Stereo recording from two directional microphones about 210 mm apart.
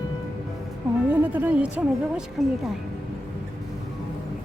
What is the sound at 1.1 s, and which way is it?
Speech, 10° right (ahead or behind).